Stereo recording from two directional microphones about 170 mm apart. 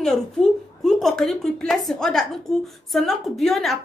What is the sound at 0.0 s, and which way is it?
A woman's voice, centre (ahead or behind).